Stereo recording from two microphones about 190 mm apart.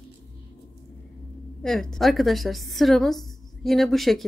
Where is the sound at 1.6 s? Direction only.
Centre (ahead or behind).